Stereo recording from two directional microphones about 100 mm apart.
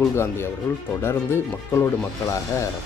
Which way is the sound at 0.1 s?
25° left (ahead or behind).